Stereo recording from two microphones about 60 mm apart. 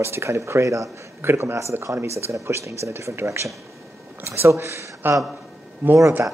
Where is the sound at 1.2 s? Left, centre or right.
Right.